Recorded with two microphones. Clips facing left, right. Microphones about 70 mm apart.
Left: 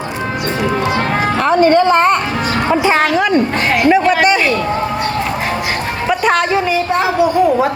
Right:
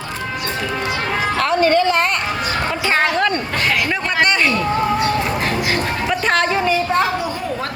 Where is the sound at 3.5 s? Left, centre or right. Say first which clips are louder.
Left 6 dB; left.